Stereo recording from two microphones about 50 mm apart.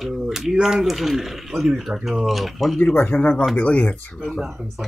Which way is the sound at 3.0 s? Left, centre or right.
Left.